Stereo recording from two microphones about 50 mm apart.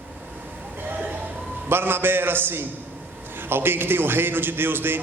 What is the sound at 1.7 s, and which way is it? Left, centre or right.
A man's voice, right.